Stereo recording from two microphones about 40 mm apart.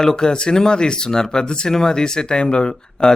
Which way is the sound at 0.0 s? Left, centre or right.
Centre.